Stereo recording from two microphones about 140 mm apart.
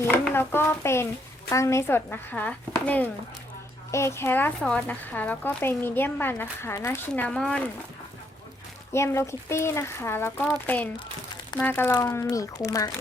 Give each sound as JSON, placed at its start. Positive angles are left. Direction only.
{"t": 0.3, "sound": "speech", "side_deg": 15}
{"t": 8.9, "sound": "speech", "side_deg": 20}
{"t": 11.6, "sound": "speech", "side_deg": 15}